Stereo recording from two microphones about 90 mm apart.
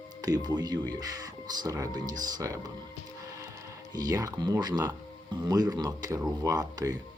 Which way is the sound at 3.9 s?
45° right (ahead or behind).